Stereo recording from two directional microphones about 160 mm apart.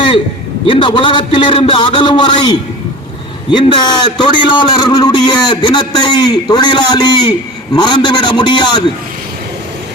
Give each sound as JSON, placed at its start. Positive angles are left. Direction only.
{"t": 0.7, "sound": "a man's voice", "side_deg": 30}